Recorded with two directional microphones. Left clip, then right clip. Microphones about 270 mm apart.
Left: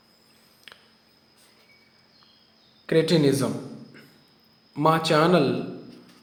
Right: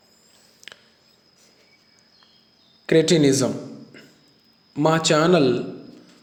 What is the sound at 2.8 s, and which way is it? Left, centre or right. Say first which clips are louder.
Speech: right 4 dB; centre.